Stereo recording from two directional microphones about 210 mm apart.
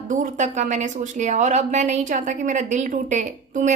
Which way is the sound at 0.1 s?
35° right (ahead or behind).